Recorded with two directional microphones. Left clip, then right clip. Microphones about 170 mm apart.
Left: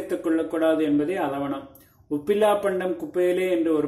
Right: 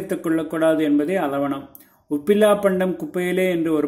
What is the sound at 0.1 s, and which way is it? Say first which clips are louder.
Speech: right 2 dB; 30° right (ahead or behind).